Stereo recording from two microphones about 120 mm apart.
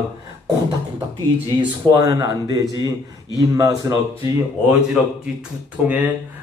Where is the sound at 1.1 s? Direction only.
35° right (ahead or behind).